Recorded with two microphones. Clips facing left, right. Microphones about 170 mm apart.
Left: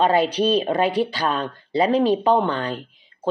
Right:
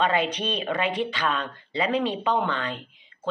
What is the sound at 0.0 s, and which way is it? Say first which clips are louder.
Speech: left 6 dB; 35° left (ahead or behind).